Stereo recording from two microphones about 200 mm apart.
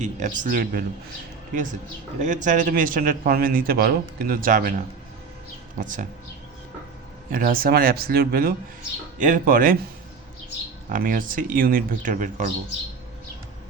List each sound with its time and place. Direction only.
0.0 s speech: 40° right (ahead or behind)
5.8 s speech: 40° right (ahead or behind)
7.3 s speech: 45° right (ahead or behind)
10.8 s speech: 45° right (ahead or behind)